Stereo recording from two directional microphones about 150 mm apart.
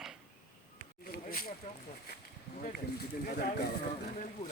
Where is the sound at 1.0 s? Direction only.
85° left.